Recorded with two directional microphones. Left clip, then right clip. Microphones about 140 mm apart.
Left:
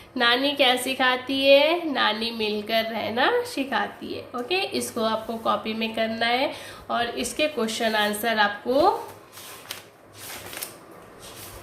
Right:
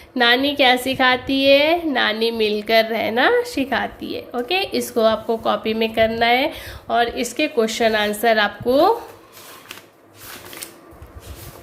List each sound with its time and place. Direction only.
0.4 s a woman's voice: 45° right (ahead or behind); by 8.9 s 65° right (ahead or behind)